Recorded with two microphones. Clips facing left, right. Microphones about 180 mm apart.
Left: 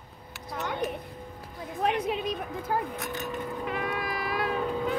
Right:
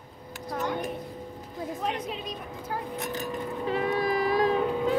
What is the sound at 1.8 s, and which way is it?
Speech, 60° left (ahead or behind).